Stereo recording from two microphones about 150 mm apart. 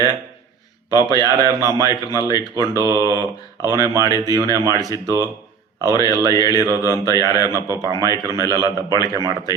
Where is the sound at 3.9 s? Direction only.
25° right (ahead or behind).